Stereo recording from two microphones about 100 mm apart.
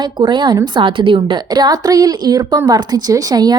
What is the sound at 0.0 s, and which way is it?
A woman's voice, 50° right (ahead or behind).